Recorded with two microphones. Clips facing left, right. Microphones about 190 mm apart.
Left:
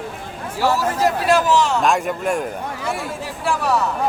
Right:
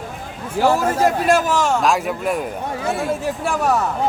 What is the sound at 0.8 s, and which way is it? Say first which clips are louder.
A man's voice: right 2 dB; 50° right (ahead or behind).